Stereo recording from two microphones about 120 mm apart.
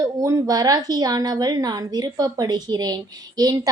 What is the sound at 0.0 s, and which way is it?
A woman's voice, 30° right (ahead or behind).